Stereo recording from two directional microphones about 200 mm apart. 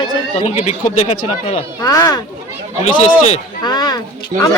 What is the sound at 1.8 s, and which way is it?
Speech, 20° left (ahead or behind).